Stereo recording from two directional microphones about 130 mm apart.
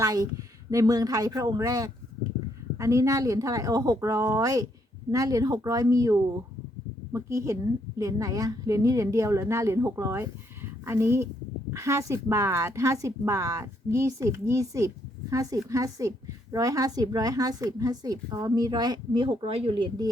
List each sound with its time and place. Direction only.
0.0 s a woman's voice: 30° right (ahead or behind)